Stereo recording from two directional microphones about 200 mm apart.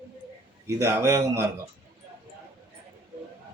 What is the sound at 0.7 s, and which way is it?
Speech, 15° right (ahead or behind).